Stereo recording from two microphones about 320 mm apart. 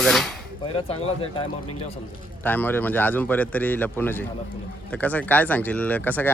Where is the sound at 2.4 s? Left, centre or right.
Centre.